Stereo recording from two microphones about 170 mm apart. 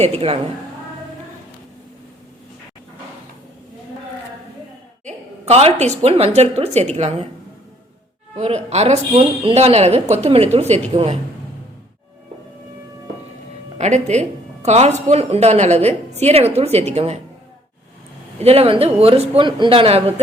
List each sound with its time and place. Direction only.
0.0 s a woman's voice: 35° right (ahead or behind)
5.0 s a woman's voice: 35° right (ahead or behind)
8.4 s a woman's voice: 40° right (ahead or behind)
13.7 s a woman's voice: 40° right (ahead or behind)
18.3 s a woman's voice: 35° right (ahead or behind)